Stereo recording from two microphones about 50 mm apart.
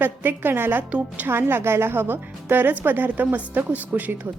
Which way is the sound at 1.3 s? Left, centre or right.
Right.